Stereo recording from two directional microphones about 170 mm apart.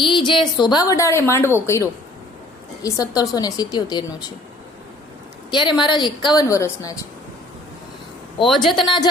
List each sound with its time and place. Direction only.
0.0 s a woman's voice: 30° left (ahead or behind)
5.5 s a woman's voice: 25° left (ahead or behind)
8.7 s a woman's voice: 25° left (ahead or behind)